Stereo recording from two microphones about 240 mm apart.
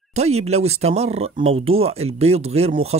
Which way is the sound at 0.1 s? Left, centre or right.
Right.